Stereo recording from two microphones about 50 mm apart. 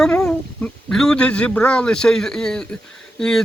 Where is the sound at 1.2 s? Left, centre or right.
Left.